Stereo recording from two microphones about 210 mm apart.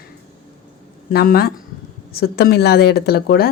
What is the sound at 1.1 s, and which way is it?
Speech, 45° left (ahead or behind).